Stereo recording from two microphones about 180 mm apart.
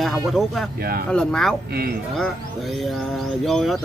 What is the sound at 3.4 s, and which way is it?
Speech, centre (ahead or behind).